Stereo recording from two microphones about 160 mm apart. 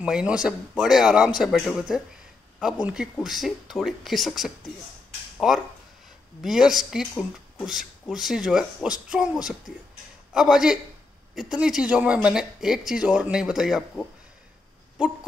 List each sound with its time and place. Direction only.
0.0 s speech: 5° right (ahead or behind)